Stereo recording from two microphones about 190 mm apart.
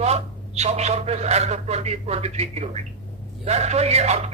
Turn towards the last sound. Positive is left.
turn(degrees=-35)  # may be behind; listen again after turning